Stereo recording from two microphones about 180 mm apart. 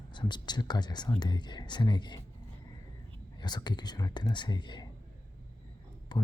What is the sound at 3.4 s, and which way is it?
Speech, 25° left (ahead or behind).